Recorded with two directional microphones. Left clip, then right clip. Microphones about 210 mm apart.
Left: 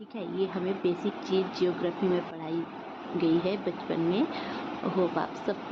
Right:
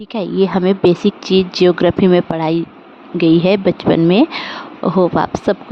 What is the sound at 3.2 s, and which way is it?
A woman's voice, 55° right (ahead or behind).